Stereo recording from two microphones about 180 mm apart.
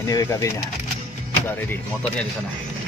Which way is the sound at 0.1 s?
20° left (ahead or behind).